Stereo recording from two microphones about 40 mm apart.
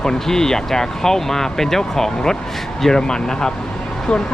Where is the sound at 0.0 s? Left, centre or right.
Centre.